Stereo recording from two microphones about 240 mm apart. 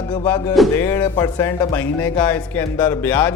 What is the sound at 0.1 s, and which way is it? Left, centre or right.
Speech, centre.